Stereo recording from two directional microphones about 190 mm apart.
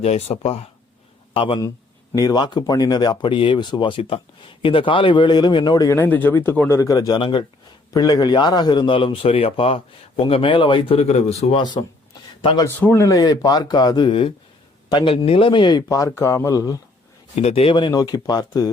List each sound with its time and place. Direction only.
0.0 s a man's voice: 35° left (ahead or behind)
11.6 s a man's voice: 25° left (ahead or behind)
12.6 s speech: 15° left (ahead or behind)
17.4 s speech: 30° left (ahead or behind)